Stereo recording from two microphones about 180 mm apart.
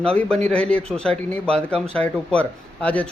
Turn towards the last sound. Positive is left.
turn(degrees=5)  # may be behind; listen again after turning